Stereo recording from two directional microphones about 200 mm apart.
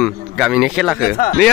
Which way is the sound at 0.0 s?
Centre (ahead or behind).